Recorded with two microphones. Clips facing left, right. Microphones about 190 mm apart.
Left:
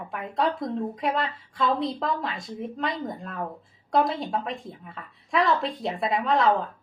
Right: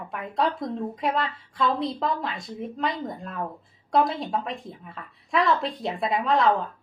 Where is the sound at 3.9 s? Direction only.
Centre (ahead or behind).